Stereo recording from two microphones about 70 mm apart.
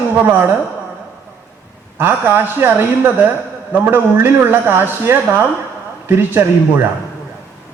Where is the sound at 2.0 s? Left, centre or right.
Right.